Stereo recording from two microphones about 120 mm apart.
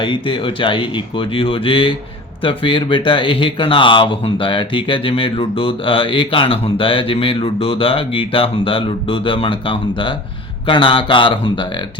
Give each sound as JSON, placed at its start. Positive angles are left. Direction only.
{"t": 0.0, "sound": "speech", "side_deg": 45}